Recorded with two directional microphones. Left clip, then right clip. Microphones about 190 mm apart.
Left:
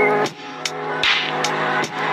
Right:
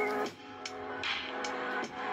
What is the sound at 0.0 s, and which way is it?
Music, 75° left (ahead or behind).